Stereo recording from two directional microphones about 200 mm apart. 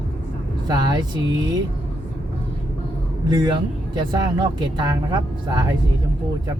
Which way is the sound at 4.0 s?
25° right (ahead or behind).